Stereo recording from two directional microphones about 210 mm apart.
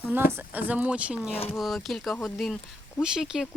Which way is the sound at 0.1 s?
10° right (ahead or behind).